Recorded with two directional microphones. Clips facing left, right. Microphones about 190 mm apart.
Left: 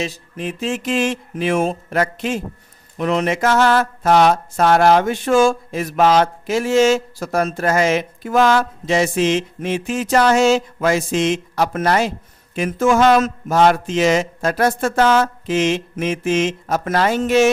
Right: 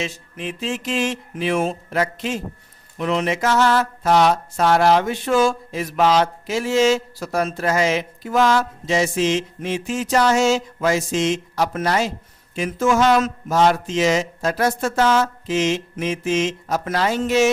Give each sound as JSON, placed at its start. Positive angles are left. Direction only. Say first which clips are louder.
{"t": 0.0, "sound": "mantra", "louder": "left 3 dB", "side_deg": 40}
{"t": 12.5, "sound": "speech", "louder": "left 3 dB", "side_deg": 55}